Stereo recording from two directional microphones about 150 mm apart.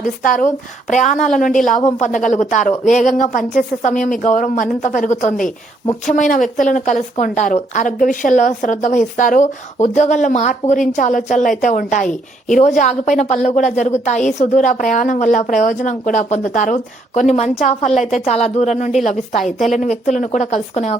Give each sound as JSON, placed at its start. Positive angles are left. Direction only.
{"t": 0.0, "sound": "a woman's voice", "side_deg": 60}
{"t": 19.4, "sound": "a woman's voice", "side_deg": 0}
{"t": 19.7, "sound": "a woman's voice", "side_deg": 55}